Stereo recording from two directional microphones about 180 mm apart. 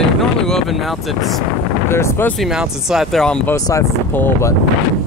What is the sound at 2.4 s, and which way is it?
Speech, 5° right (ahead or behind).